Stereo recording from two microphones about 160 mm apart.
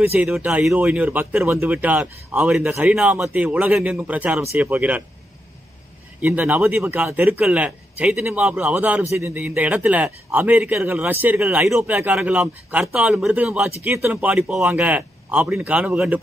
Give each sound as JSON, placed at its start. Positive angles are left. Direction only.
{"t": 0.0, "sound": "a man's voice", "side_deg": -10}
{"t": 6.2, "sound": "a man's voice", "side_deg": -10}
{"t": 13.8, "sound": "a man's voice", "side_deg": -15}